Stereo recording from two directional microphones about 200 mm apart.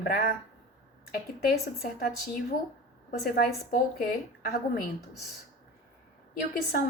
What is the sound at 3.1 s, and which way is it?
A woman's voice, 50° left (ahead or behind).